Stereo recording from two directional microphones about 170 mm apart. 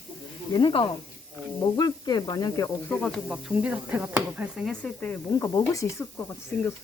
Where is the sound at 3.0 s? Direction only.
Centre (ahead or behind).